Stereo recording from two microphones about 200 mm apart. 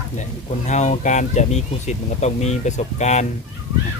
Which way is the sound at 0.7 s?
35° left (ahead or behind).